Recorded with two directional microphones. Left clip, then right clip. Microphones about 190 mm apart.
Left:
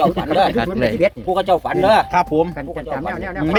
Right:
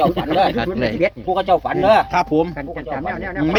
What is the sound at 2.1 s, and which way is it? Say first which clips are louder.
Speech: left 1 dB; 45° right (ahead or behind).